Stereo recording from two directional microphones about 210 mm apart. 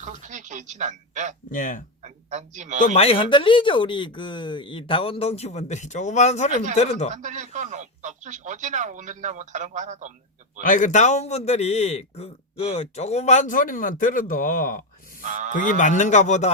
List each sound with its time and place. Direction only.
0.0 s a sound: 35° right (ahead or behind)
1.5 s a man's voice: 40° left (ahead or behind)
2.0 s speech: 35° right (ahead or behind)
2.8 s a man's voice: 30° left (ahead or behind)
7.1 s speech: 35° right (ahead or behind)
10.6 s a man's voice: 35° left (ahead or behind)
15.2 s speech: 35° right (ahead or behind)
15.5 s a man's voice: 40° left (ahead or behind)